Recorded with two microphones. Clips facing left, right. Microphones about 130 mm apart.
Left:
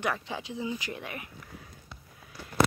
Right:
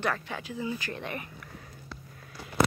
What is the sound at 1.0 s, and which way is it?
Speech, 5° left (ahead or behind).